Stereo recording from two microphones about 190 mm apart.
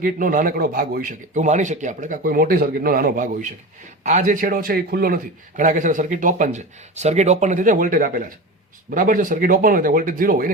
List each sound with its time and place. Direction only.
0.0 s a man's voice: 45° right (ahead or behind)